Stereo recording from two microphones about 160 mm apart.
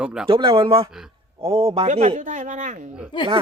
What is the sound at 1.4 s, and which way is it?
A man's voice, 40° right (ahead or behind).